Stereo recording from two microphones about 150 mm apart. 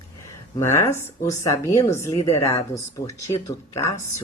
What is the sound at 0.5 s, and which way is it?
Speech, 15° left (ahead or behind).